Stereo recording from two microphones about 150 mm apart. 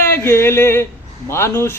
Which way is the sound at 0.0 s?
15° left (ahead or behind).